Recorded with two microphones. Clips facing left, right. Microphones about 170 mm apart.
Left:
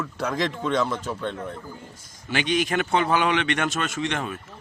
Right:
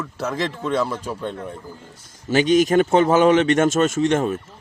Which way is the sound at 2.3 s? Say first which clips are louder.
Right 8 dB; 40° right (ahead or behind).